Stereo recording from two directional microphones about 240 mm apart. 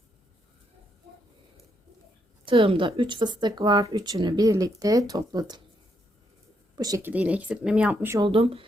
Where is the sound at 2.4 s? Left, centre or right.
Right.